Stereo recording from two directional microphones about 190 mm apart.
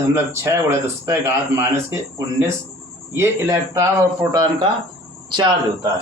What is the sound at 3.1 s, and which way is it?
Speech, 15° right (ahead or behind).